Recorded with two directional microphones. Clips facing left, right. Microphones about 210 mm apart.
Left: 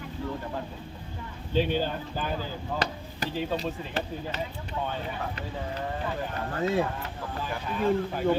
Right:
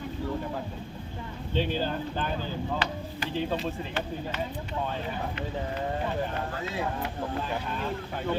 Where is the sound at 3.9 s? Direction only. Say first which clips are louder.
Even; 35° left (ahead or behind).